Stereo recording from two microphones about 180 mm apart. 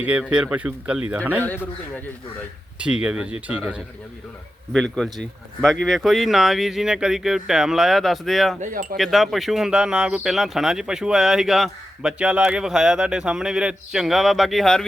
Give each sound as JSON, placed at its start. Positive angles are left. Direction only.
{"t": 0.0, "sound": "speech", "side_deg": -5}
{"t": 2.7, "sound": "speech", "side_deg": -5}
{"t": 8.6, "sound": "wind chime", "side_deg": -50}
{"t": 9.0, "sound": "speech", "side_deg": 0}